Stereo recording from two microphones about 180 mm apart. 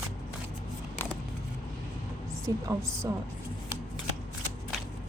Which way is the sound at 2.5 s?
15° right (ahead or behind).